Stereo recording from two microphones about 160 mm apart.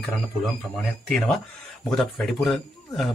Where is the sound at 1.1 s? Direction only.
5° left (ahead or behind).